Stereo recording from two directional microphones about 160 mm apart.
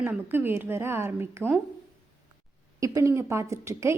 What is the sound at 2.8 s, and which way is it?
A woman's voice, 20° right (ahead or behind).